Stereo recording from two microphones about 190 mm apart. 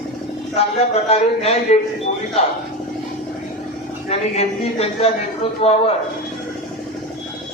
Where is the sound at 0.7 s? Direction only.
35° left (ahead or behind).